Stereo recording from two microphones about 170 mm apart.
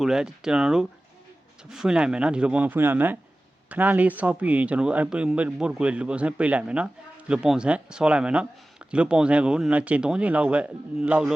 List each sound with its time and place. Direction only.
0.0 s a man's voice: 5° right (ahead or behind)